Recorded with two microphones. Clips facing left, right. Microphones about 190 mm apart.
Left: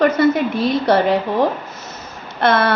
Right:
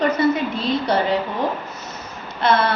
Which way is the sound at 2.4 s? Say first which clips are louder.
Left 2 dB; 50° left (ahead or behind).